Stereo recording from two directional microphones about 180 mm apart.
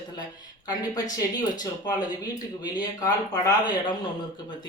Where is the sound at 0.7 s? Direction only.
20° left (ahead or behind).